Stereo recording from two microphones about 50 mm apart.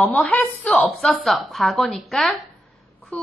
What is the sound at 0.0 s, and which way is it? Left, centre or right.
Speech, left.